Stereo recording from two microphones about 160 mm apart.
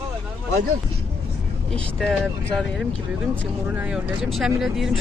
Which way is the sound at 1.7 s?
5° left (ahead or behind).